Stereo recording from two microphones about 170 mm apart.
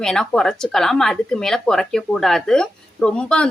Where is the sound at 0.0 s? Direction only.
5° left (ahead or behind).